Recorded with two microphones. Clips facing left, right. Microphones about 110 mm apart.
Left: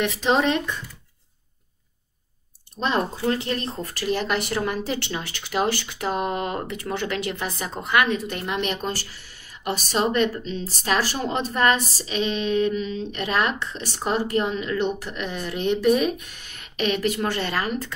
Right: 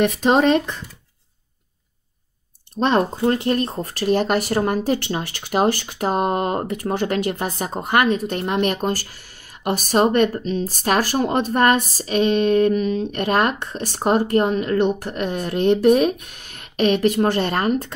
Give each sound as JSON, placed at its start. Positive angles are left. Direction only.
{"t": 0.0, "sound": "speech", "side_deg": -50}
{"t": 2.8, "sound": "speech", "side_deg": -40}